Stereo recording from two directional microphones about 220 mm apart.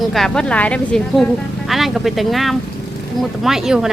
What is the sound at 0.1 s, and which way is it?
Speech, centre (ahead or behind).